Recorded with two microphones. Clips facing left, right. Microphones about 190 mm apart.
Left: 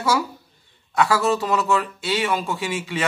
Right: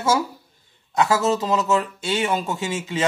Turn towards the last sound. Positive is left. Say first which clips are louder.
# right 1 dB
turn(degrees=-20)  # may be behind; listen again after turning